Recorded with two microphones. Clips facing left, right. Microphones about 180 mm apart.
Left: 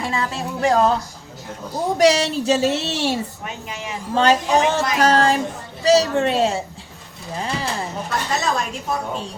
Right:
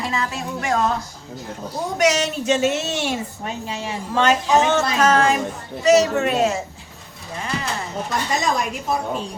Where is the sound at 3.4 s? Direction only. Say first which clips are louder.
Right 3 dB; 30° right (ahead or behind).